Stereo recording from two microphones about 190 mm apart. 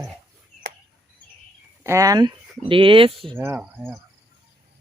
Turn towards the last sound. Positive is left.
turn(degrees=-10)  # may be behind; listen again after turning